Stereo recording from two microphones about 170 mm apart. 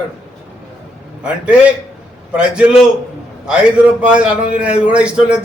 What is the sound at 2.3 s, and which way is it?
A man's voice, 5° right (ahead or behind).